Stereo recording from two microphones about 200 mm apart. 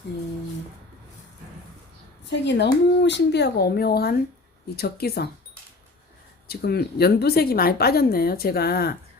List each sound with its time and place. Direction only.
2.3 s speech: 60° left (ahead or behind)
6.5 s speech: 50° left (ahead or behind)